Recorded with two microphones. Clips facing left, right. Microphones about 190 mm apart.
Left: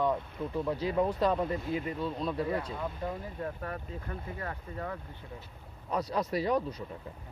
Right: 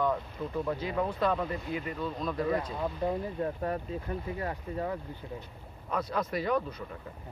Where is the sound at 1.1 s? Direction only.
35° left (ahead or behind).